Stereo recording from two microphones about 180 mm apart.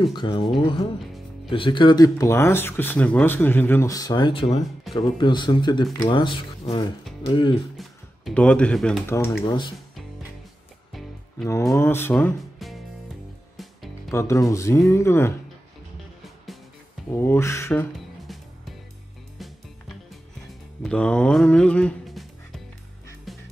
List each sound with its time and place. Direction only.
0.0 s speech: 25° left (ahead or behind)
1.5 s speech: 30° left (ahead or behind)
8.3 s speech: 5° left (ahead or behind)
9.0 s speech: 15° left (ahead or behind)
11.7 s speech: 15° left (ahead or behind)
12.5 s music: centre (ahead or behind)
14.1 s speech: 15° left (ahead or behind)
17.1 s speech: 15° left (ahead or behind)
20.8 s speech: 5° left (ahead or behind)
23.3 s music: centre (ahead or behind)